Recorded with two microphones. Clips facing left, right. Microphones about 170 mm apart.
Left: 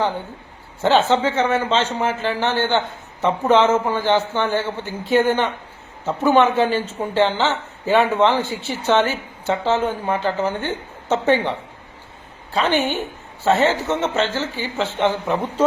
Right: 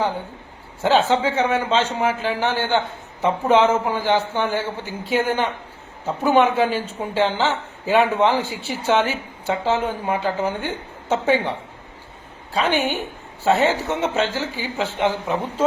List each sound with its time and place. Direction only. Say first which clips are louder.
0.8 s speech: left 1 dB; 10° right (ahead or behind)
12.5 s speech: left 1 dB; 10° right (ahead or behind)